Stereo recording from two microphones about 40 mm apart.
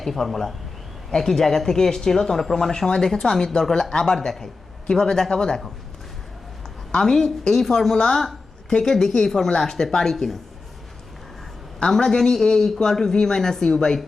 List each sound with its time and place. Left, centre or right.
0.0 s speech: centre
6.9 s speech: centre
11.9 s speech: centre